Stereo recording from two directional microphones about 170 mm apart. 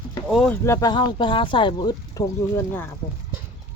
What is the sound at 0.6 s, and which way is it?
Speech, 20° left (ahead or behind).